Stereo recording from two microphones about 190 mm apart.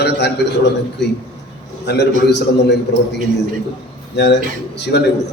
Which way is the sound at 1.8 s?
60° left (ahead or behind).